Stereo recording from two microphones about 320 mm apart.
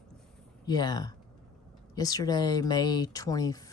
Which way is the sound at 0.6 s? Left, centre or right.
Centre.